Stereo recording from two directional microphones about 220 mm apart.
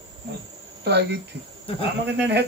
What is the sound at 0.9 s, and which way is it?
Speech, 50° right (ahead or behind).